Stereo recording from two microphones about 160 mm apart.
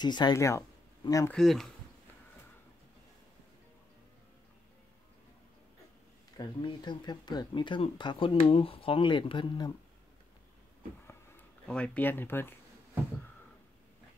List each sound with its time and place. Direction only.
0.0 s speech: 25° left (ahead or behind)
1.3 s speech: centre (ahead or behind)
6.3 s speech: 30° left (ahead or behind)
11.1 s a sound: 15° left (ahead or behind)